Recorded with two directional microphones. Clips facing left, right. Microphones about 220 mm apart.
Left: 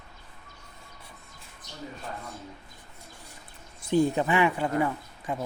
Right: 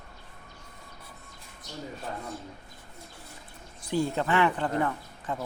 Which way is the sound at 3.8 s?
20° left (ahead or behind).